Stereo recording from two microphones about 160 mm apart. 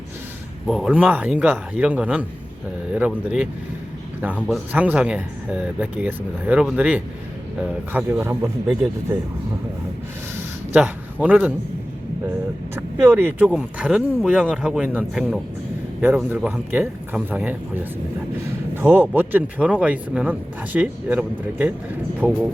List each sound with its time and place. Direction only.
0.7 s speech: 5° right (ahead or behind)
10.7 s a man's voice: 10° right (ahead or behind)
12.7 s speech: 10° right (ahead or behind)